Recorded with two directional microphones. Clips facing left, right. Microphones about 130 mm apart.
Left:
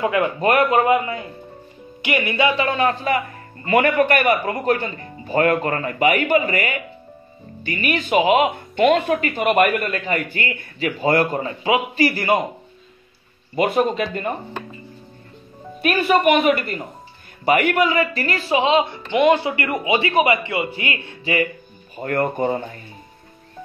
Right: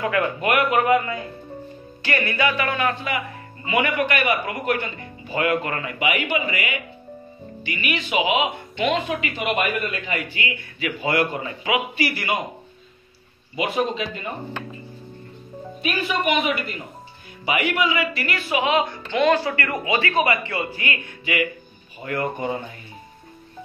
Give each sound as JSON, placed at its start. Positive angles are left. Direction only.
{"t": 0.0, "sound": "speech", "side_deg": 20}
{"t": 0.4, "sound": "speech", "side_deg": 35}
{"t": 0.8, "sound": "speech", "side_deg": 20}
{"t": 3.6, "sound": "speech", "side_deg": 45}
{"t": 4.5, "sound": "speech", "side_deg": 35}
{"t": 13.6, "sound": "speech", "side_deg": 50}
{"t": 15.8, "sound": "a woman's voice", "side_deg": 60}
{"t": 21.9, "sound": "speech", "side_deg": 50}